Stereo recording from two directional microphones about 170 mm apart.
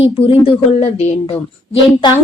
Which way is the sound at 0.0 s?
35° left (ahead or behind).